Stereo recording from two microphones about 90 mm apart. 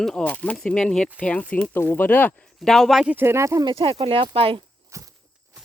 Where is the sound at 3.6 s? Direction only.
90° right.